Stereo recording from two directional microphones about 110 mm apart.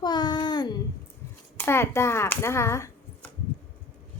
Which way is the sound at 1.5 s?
20° left (ahead or behind).